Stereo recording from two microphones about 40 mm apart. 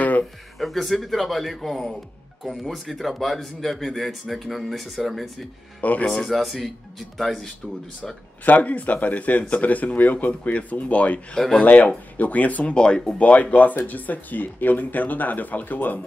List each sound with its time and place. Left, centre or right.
0.6 s speech: centre
2.4 s speech: centre
5.8 s speech: left
6.2 s speech: centre
8.5 s speech: left
11.3 s speech: centre
11.6 s speech: left
12.7 s speech: left
13.2 s speech: left